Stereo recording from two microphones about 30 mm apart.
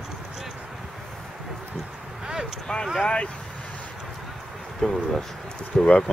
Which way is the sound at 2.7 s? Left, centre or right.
Left.